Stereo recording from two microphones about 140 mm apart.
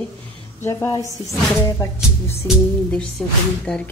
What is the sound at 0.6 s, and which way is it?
A woman's voice, 20° left (ahead or behind).